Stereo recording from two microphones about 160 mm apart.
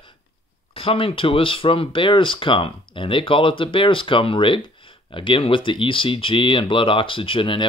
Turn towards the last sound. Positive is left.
turn(degrees=30)  # may be behind; listen again after turning